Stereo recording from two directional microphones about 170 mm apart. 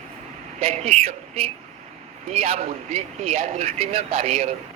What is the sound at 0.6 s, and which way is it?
Speech, 35° right (ahead or behind).